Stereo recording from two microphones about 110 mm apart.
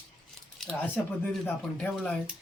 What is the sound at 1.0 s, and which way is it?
Speech, 15° left (ahead or behind).